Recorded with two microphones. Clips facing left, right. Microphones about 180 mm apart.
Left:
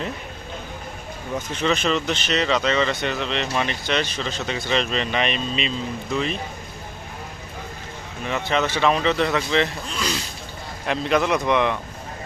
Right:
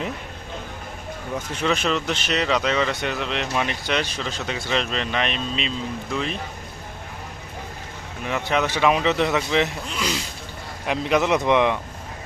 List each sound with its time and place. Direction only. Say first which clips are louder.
1.5 s speech: left 1 dB; 5° right (ahead or behind)
8.3 s speech: even; 10° right (ahead or behind)